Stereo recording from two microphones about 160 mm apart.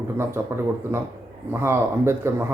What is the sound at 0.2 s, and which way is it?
Speech, 15° right (ahead or behind).